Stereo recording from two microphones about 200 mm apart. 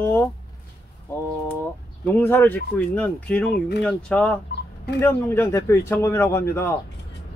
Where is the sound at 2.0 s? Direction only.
10° left (ahead or behind).